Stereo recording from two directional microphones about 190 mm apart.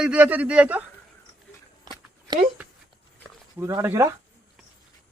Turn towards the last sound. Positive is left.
turn(degrees=-15)  # may be behind; listen again after turning